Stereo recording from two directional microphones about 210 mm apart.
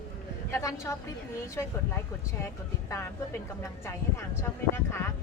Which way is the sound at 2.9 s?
10° left (ahead or behind).